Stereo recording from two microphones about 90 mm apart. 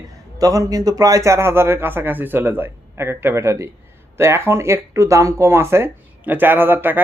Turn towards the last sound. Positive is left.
turn(degrees=-20)  # may be behind; listen again after turning